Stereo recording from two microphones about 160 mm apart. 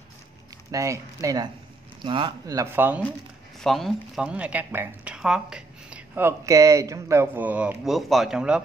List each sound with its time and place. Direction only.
0.7 s speech: 20° right (ahead or behind)
3.5 s speech: centre (ahead or behind)